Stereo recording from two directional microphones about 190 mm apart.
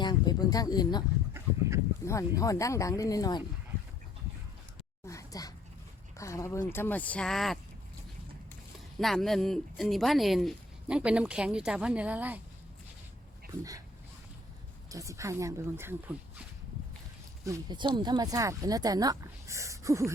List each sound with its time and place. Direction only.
0.0 s speech: 20° left (ahead or behind)
2.0 s speech: 15° left (ahead or behind)
5.0 s a sound: 15° left (ahead or behind)
6.1 s speech: 15° left (ahead or behind)
9.0 s speech: centre (ahead or behind)
13.5 s speech: 15° right (ahead or behind)
14.8 s speech: 15° right (ahead or behind)
17.4 s speech: 20° right (ahead or behind)